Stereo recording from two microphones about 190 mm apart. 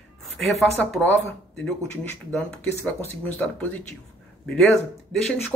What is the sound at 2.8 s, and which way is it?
Speech, 5° left (ahead or behind).